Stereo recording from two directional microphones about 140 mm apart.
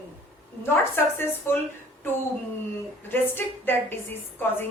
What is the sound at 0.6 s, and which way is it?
Speech, 15° left (ahead or behind).